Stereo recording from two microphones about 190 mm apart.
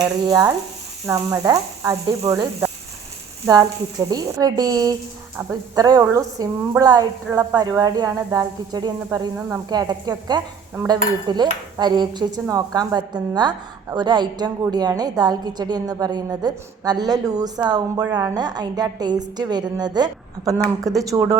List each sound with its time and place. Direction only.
0.0 s a woman's voice: 20° right (ahead or behind)